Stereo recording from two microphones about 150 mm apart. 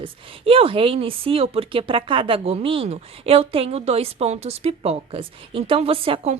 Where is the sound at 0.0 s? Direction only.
35° right (ahead or behind).